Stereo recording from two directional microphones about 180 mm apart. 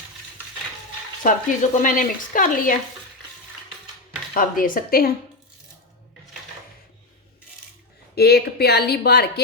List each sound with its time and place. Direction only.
1.2 s speech: 45° left (ahead or behind)
4.4 s speech: 50° left (ahead or behind)
8.1 s speech: 60° left (ahead or behind)